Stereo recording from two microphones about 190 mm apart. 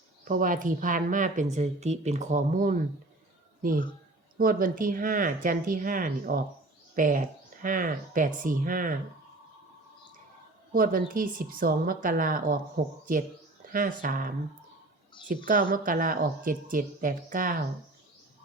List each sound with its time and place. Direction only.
0.3 s a woman's voice: 45° right (ahead or behind)
10.7 s a woman's voice: 50° right (ahead or behind)